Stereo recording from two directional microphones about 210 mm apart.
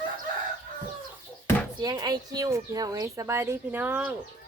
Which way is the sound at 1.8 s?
20° right (ahead or behind).